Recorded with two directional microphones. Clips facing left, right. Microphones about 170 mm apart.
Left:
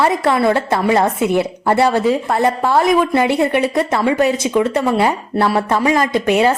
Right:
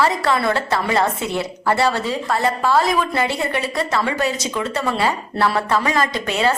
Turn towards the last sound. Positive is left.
turn(degrees=15)  # may be behind; listen again after turning